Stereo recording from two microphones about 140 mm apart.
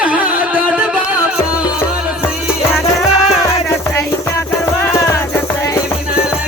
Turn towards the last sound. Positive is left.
turn(degrees=20)  # may be behind; listen again after turning